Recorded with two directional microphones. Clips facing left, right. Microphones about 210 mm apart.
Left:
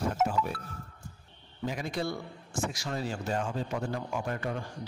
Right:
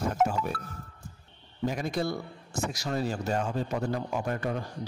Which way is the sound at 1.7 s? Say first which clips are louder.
Right 2 dB; 40° right (ahead or behind).